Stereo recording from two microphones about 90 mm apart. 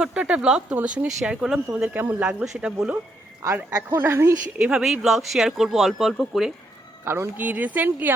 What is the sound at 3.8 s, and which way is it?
Speech, 25° right (ahead or behind).